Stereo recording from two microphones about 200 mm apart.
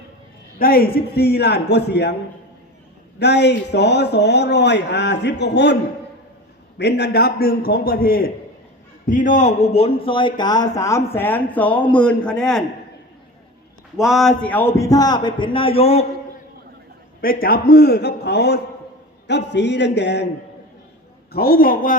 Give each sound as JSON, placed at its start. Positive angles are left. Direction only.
{"t": 0.6, "sound": "a man's voice", "side_deg": 50}
{"t": 3.2, "sound": "speech", "side_deg": 55}
{"t": 6.7, "sound": "a man's voice", "side_deg": 55}
{"t": 13.9, "sound": "a man's voice", "side_deg": 0}
{"t": 17.2, "sound": "a man's voice", "side_deg": 45}
{"t": 21.3, "sound": "a man's voice", "side_deg": 50}